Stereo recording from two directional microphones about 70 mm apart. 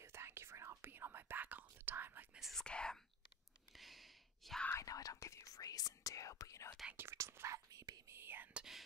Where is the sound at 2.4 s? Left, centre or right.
Centre.